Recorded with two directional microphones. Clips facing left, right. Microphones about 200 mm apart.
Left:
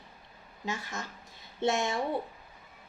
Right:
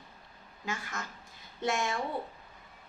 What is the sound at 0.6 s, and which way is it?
A woman's voice, 25° left (ahead or behind).